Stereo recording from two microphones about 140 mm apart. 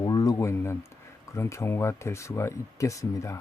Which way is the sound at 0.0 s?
25° left (ahead or behind).